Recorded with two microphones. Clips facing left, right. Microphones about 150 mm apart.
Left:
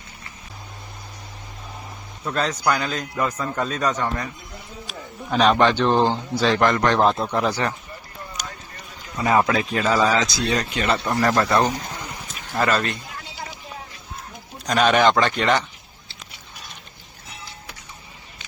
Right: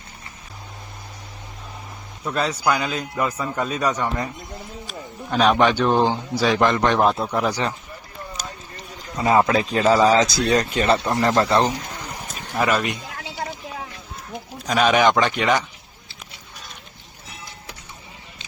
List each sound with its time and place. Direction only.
2.2 s a man's voice: 10° right (ahead or behind)
4.9 s a sound: centre (ahead or behind)
5.5 s a man's voice: 10° right (ahead or behind)
7.0 s a man's voice: 5° right (ahead or behind)
8.7 s a man's voice: 25° right (ahead or behind)
10.3 s speech: 40° right (ahead or behind); by 11.6 s 25° right (ahead or behind)
12.5 s a man's voice: 10° right (ahead or behind)
14.7 s a man's voice: 10° right (ahead or behind)